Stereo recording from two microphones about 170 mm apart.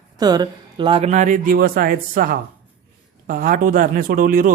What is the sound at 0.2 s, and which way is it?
A man's voice, 25° right (ahead or behind).